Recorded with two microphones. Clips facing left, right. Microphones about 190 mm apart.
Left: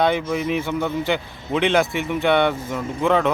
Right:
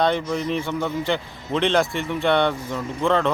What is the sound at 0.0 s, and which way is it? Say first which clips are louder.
A man's voice: left 1 dB; 5° left (ahead or behind).